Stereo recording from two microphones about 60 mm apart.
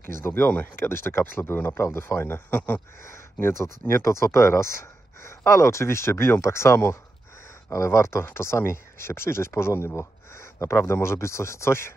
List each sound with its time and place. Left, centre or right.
0.0 s speech: left
0.5 s speech: left
0.8 s speech: left
3.5 s speech: left
9.9 s a sound: left
10.6 s speech: left